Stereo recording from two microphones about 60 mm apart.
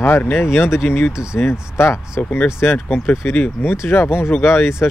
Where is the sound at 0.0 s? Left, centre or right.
Left.